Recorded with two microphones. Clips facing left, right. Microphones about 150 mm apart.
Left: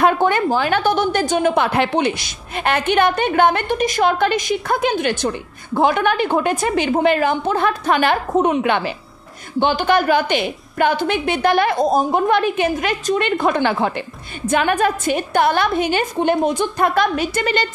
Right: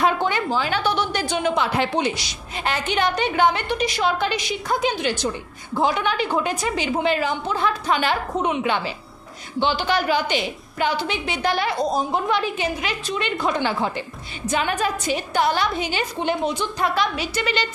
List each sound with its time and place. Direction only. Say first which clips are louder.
0.0 s a woman's voice: left 5 dB; 50° left (ahead or behind)